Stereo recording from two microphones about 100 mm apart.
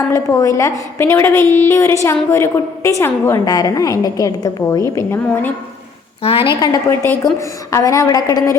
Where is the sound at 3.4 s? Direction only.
35° left (ahead or behind).